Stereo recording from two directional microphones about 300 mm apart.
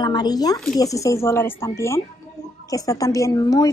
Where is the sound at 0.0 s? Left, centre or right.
Centre.